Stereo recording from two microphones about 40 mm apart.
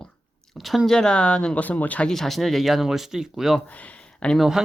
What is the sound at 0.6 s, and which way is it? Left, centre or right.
Speech, centre.